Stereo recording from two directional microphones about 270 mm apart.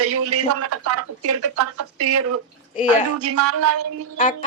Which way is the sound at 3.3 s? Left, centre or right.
Right.